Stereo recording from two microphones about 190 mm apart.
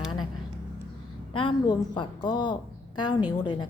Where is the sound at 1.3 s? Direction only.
25° left (ahead or behind).